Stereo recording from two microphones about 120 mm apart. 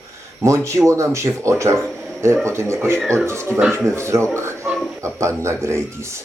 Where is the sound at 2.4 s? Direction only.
20° right (ahead or behind).